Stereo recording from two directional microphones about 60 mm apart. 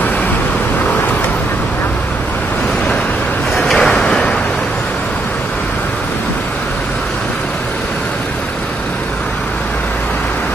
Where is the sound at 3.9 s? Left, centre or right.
Centre.